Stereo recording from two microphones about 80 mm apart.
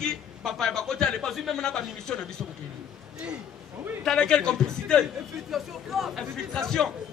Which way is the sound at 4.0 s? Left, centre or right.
Centre.